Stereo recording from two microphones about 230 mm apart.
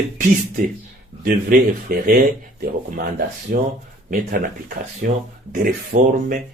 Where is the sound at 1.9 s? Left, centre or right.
Right.